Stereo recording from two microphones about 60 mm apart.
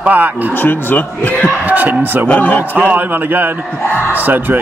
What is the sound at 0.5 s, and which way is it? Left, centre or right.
Speech, left.